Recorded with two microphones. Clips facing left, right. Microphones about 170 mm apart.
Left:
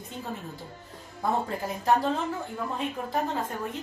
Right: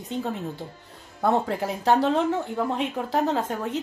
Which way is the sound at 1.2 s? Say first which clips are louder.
Right 5 dB; 75° right (ahead or behind).